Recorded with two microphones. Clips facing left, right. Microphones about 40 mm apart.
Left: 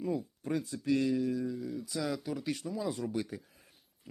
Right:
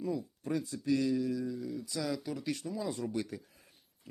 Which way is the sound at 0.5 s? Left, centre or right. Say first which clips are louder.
Left 1 dB; left.